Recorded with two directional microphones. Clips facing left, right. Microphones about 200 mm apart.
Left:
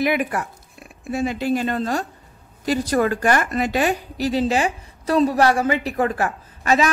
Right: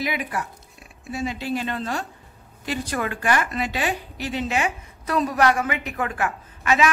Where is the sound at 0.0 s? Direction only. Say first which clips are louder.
Left 6 dB; 55° left (ahead or behind).